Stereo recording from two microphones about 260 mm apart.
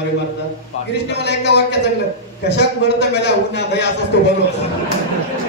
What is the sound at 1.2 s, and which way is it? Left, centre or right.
Speech, left.